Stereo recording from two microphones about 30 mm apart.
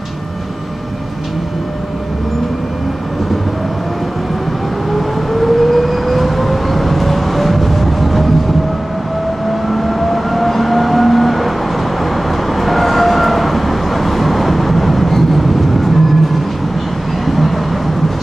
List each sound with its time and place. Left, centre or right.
4.9 s vehicle: centre
9.5 s vehicle: centre